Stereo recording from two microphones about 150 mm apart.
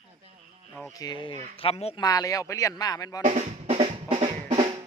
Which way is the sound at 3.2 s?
50° right (ahead or behind).